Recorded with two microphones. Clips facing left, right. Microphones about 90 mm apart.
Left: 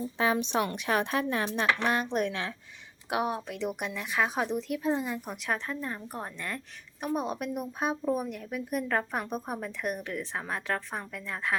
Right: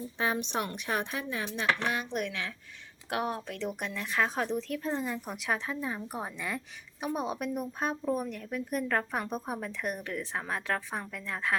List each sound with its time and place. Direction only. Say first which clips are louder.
0.2 s a woman's voice: left 4 dB; 90° left; by 2.0 s 45° left (ahead or behind)
2.0 s speech: left 4 dB; 35° left (ahead or behind)
3.1 s a woman's voice: left 2 dB; 10° left (ahead or behind)